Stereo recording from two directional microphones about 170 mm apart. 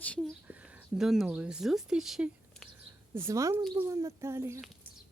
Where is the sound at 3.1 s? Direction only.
15° right (ahead or behind).